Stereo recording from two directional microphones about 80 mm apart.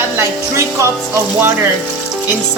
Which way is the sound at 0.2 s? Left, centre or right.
Right.